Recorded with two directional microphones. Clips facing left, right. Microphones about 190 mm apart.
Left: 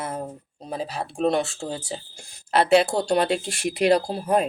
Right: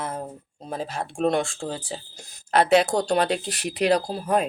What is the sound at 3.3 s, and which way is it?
Speech, 40° right (ahead or behind).